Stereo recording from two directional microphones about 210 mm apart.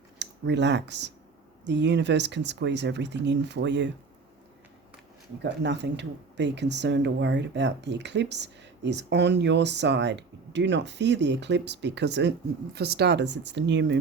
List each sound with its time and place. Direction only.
0.2 s speech: 55° right (ahead or behind)
5.4 s speech: 55° right (ahead or behind)